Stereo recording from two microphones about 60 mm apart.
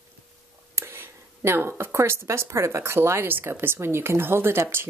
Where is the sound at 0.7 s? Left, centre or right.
Right.